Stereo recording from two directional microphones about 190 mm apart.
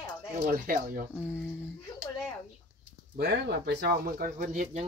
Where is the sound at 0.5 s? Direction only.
45° right (ahead or behind).